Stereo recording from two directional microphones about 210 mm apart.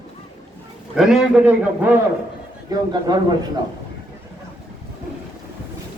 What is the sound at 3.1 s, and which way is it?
Speech, 20° right (ahead or behind).